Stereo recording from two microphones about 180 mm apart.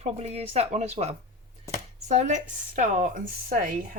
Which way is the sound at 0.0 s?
35° right (ahead or behind).